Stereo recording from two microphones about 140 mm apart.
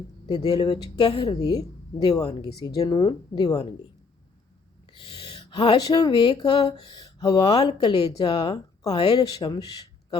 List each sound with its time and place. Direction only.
0.3 s a woman's voice: 30° left (ahead or behind)
4.9 s a woman's voice: 40° left (ahead or behind)